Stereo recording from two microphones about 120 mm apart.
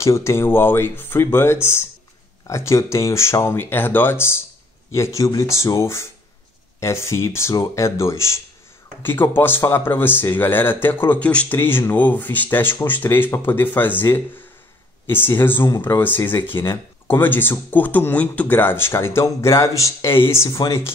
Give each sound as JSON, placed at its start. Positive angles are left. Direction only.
{"t": 0.0, "sound": "speech", "side_deg": 25}